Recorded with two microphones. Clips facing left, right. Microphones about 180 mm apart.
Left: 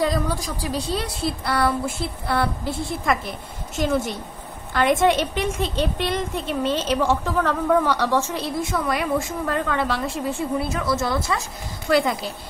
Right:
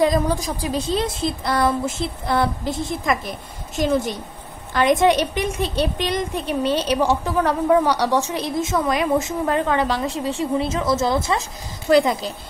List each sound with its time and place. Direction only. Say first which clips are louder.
0.0 s a woman's voice: right 4 dB; 20° right (ahead or behind)